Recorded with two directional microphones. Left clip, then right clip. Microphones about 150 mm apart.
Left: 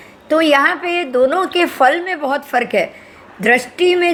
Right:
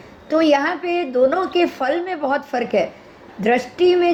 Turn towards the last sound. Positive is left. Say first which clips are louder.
# left 2 dB
turn(degrees=30)  # may be behind; listen again after turning